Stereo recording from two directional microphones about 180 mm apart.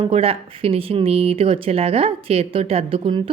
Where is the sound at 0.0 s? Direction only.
30° right (ahead or behind).